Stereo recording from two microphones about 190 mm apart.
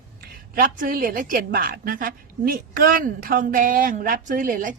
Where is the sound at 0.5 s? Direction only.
50° right (ahead or behind).